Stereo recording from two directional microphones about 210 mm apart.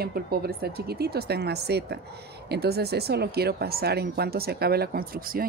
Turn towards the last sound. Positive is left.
turn(degrees=-45)  # may be behind; listen again after turning